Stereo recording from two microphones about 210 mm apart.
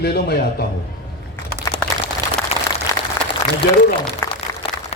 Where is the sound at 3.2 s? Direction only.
15° left (ahead or behind).